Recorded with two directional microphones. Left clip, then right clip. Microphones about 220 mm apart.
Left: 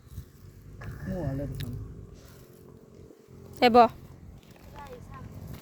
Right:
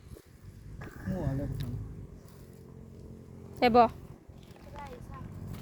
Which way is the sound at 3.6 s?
20° left (ahead or behind).